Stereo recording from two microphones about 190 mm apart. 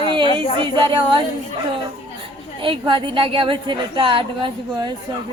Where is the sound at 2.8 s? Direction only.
25° right (ahead or behind).